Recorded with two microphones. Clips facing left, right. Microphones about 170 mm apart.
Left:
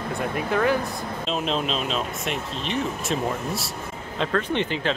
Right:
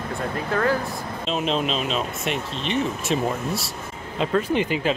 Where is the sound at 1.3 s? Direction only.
Centre (ahead or behind).